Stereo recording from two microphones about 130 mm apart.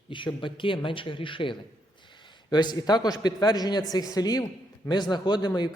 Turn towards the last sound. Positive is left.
turn(degrees=35)  # may be behind; listen again after turning